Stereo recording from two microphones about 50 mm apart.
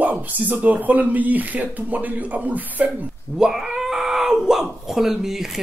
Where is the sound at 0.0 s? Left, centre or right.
Right.